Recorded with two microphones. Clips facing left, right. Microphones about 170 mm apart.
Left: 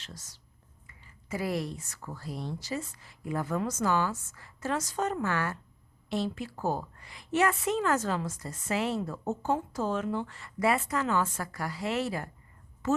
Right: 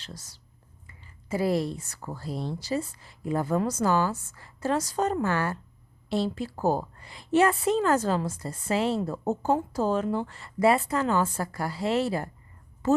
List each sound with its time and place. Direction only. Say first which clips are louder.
0.0 s a woman's voice: right 4 dB; 35° right (ahead or behind)